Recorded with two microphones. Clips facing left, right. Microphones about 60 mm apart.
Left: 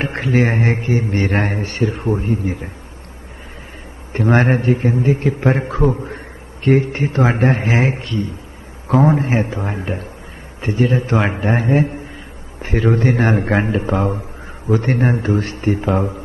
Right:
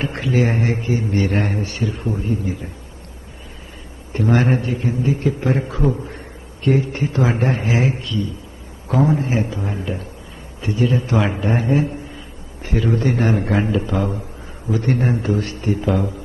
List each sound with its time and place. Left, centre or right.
0.0 s a man's voice: left
4.1 s a man's voice: left
6.0 s a sound: left
6.7 s a man's voice: left